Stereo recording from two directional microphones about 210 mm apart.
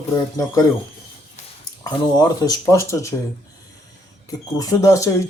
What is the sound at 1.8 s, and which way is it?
Speech, 20° left (ahead or behind).